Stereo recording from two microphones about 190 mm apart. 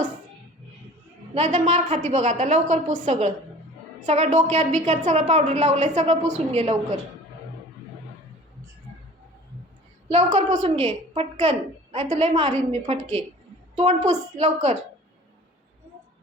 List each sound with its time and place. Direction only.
1.3 s a woman's voice: 35° right (ahead or behind)
10.1 s a woman's voice: 35° right (ahead or behind)